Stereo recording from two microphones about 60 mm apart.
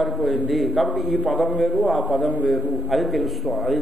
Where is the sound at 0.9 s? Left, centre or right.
Left.